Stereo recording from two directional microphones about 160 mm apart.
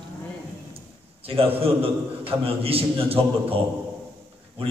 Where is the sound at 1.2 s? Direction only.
35° right (ahead or behind).